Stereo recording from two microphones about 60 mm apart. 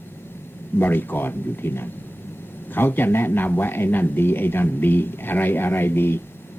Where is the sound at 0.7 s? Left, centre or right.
Left.